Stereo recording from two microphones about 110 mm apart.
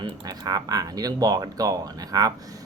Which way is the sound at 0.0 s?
35° right (ahead or behind).